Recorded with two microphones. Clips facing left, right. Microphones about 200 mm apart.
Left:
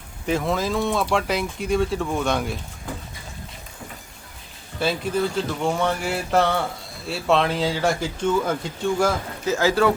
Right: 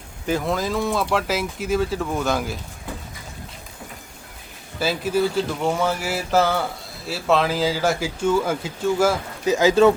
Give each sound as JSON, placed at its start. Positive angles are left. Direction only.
{"t": 0.3, "sound": "speech", "side_deg": 0}
{"t": 4.8, "sound": "speech", "side_deg": -5}
{"t": 9.5, "sound": "speech", "side_deg": -20}